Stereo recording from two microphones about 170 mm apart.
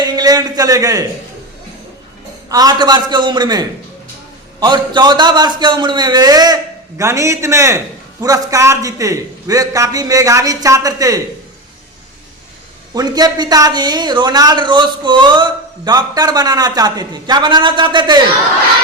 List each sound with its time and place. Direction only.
0.0 s a man's voice: 25° right (ahead or behind)
2.5 s a man's voice: 20° right (ahead or behind)
12.9 s speech: 25° right (ahead or behind)